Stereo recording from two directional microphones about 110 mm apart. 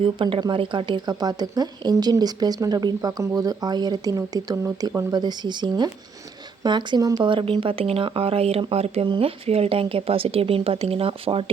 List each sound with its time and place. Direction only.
0.0 s speech: 50° right (ahead or behind)
7.3 s speech: 50° right (ahead or behind); by 9.0 s 70° right (ahead or behind)
9.0 s speech: 55° right (ahead or behind)